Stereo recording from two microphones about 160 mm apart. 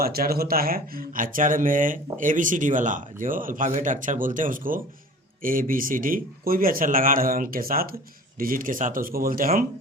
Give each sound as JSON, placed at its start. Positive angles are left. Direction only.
{"t": 0.0, "sound": "speech", "side_deg": -70}